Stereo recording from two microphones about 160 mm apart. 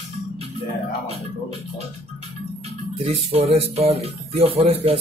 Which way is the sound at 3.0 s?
40° right (ahead or behind).